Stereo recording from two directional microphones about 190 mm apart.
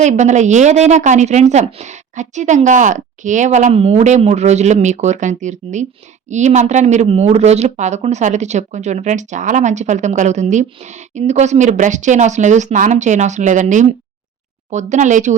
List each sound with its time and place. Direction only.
0.0 s speech: 40° right (ahead or behind)